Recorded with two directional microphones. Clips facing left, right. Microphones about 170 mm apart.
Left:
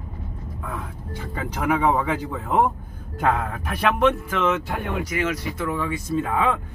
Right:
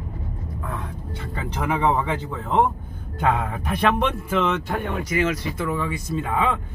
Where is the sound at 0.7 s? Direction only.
10° left (ahead or behind).